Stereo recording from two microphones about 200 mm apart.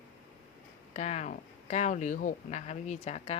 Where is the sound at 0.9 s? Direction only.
35° left (ahead or behind).